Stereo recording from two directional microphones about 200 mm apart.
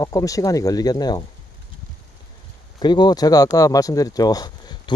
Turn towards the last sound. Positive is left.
turn(degrees=25)  # may be behind; listen again after turning